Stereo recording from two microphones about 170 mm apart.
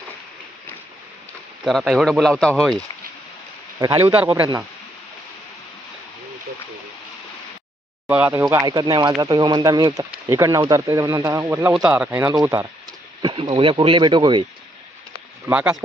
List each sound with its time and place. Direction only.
1.6 s speech: centre (ahead or behind)
4.0 s speech: 10° right (ahead or behind)
8.0 s speech: 10° right (ahead or behind)
12.3 s speech: 20° right (ahead or behind)
15.4 s speech: 10° right (ahead or behind)